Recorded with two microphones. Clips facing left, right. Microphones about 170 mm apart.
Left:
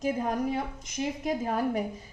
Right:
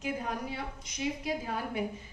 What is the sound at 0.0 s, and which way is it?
A woman's voice, 45° left (ahead or behind).